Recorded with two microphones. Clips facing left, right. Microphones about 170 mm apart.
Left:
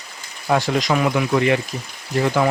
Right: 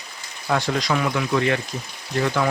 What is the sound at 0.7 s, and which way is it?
Speech, 20° left (ahead or behind).